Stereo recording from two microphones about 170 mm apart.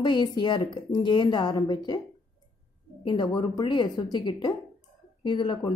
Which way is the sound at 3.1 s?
25° left (ahead or behind).